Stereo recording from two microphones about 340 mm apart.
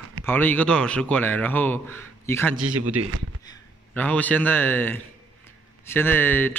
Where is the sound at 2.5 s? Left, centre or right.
Right.